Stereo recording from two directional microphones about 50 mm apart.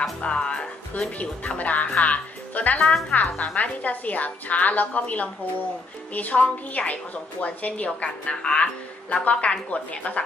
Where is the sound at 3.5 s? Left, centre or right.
Left.